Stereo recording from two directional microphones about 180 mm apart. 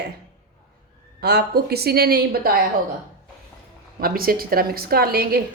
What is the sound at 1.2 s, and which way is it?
A woman's voice, 60° right (ahead or behind).